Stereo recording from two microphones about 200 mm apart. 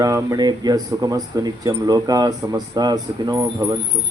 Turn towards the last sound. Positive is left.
turn(degrees=-20)  # may be behind; listen again after turning